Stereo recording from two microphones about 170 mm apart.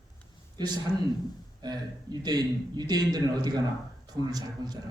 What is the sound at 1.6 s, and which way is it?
A man's voice, 25° right (ahead or behind).